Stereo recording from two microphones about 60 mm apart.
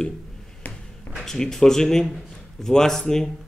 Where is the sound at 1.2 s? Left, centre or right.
Centre.